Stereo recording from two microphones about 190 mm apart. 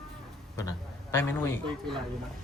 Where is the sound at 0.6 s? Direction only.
15° left (ahead or behind).